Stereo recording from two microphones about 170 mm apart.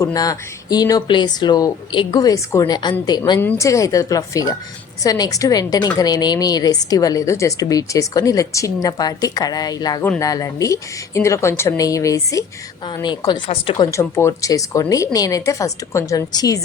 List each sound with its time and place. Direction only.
0.0 s a woman's voice: 20° left (ahead or behind)
13.9 s a woman's voice: 15° left (ahead or behind)